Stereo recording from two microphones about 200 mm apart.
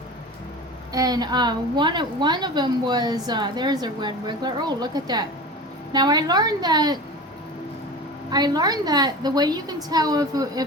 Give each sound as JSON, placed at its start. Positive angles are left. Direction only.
{"t": 0.9, "sound": "a woman's voice", "side_deg": -20}
{"t": 8.3, "sound": "a woman's voice", "side_deg": -20}